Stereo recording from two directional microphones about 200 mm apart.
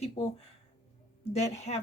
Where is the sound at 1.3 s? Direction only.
35° left (ahead or behind).